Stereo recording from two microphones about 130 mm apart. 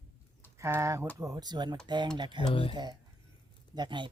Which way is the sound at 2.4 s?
40° left (ahead or behind).